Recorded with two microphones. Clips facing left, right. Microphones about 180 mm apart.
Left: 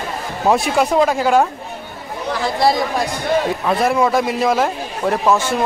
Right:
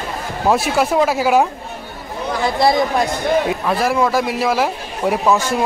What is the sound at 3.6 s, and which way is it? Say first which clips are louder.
A man's voice: left 1 dB; centre (ahead or behind).